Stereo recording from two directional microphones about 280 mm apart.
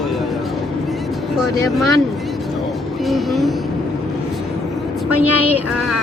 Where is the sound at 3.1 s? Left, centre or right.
Centre.